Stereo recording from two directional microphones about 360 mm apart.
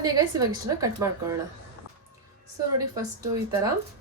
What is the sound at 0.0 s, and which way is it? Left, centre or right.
A woman's voice, centre.